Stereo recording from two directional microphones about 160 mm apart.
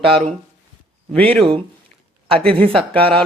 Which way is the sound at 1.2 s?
40° right (ahead or behind).